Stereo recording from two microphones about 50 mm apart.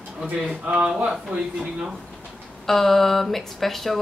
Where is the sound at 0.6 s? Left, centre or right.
Centre.